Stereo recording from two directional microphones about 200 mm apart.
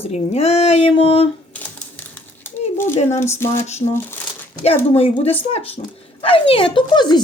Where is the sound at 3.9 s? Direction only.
10° left (ahead or behind).